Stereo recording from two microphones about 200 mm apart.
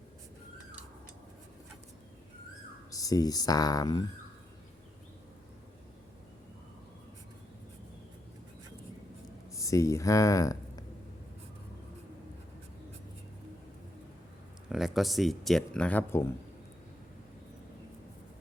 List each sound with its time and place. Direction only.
2.9 s speech: 15° left (ahead or behind)
9.5 s speech: 15° left (ahead or behind)
14.7 s speech: centre (ahead or behind)